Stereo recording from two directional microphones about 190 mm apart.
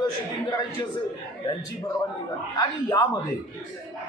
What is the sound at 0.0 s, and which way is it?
Speech, 20° left (ahead or behind).